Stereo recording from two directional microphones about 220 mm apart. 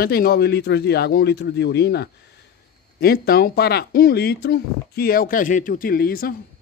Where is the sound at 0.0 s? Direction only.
45° left (ahead or behind).